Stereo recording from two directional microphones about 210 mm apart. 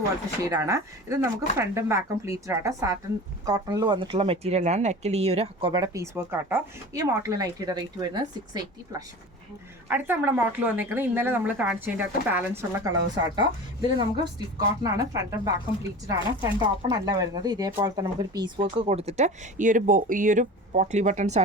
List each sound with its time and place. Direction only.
0.4 s speech: 15° right (ahead or behind)
13.3 s speech: 20° right (ahead or behind)